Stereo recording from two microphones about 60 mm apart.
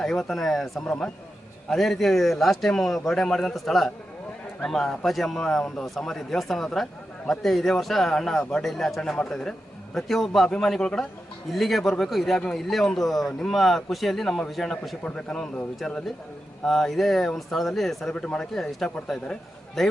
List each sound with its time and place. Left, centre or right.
0.0 s a man's voice: centre
15.0 s a man's voice: centre
18.1 s a man's voice: centre